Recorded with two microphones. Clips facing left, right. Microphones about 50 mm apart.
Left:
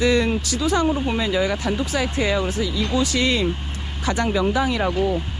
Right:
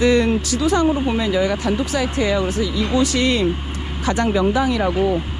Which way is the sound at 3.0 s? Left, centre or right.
Right.